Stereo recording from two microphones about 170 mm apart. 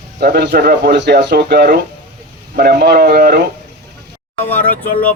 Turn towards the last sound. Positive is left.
turn(degrees=10)  # may be behind; listen again after turning